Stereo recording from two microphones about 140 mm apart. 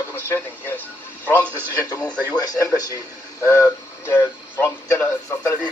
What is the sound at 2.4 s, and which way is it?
Speech, 25° left (ahead or behind).